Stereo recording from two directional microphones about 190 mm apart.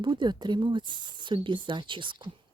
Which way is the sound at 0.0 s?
25° right (ahead or behind).